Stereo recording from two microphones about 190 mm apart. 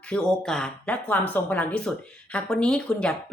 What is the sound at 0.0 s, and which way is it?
Speech, 5° left (ahead or behind).